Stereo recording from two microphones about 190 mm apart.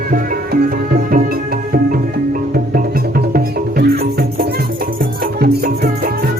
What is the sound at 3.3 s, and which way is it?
Music, 55° right (ahead or behind).